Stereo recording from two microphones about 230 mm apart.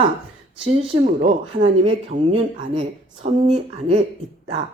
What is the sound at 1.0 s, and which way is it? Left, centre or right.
Speech, right.